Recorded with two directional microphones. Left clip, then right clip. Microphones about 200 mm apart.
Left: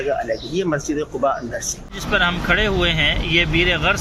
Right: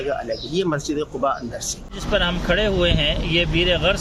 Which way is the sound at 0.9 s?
10° right (ahead or behind).